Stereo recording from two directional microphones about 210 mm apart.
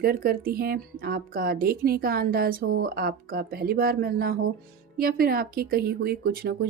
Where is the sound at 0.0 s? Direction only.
45° right (ahead or behind).